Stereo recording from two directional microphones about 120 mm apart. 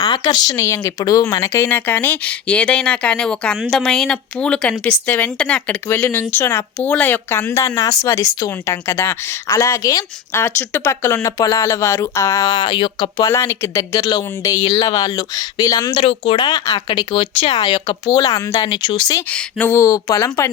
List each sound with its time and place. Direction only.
0.0 s a woman's voice: 35° left (ahead or behind)
16.0 s speech: 50° left (ahead or behind)
17.6 s speech: 35° left (ahead or behind)
18.7 s speech: 45° left (ahead or behind)
19.3 s speech: 10° left (ahead or behind)
19.7 s a woman's voice: 30° left (ahead or behind)